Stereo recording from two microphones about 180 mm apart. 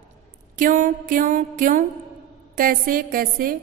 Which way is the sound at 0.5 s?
45° right (ahead or behind).